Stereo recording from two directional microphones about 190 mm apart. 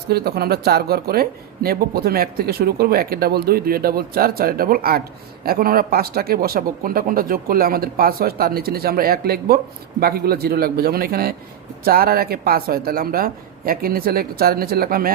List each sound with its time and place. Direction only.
0.1 s speech: 55° right (ahead or behind)